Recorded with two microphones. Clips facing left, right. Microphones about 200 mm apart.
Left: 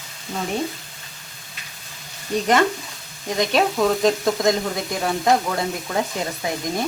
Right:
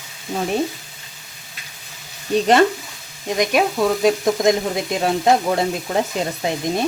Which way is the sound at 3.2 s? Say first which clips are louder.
Right 2 dB; 15° right (ahead or behind).